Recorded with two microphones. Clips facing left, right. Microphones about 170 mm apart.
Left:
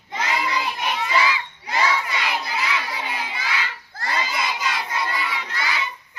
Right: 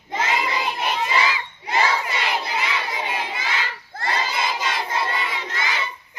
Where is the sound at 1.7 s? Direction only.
25° right (ahead or behind).